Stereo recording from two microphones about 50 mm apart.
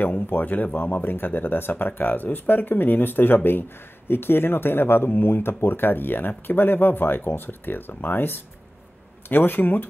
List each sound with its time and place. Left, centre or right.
0.0 s speech: left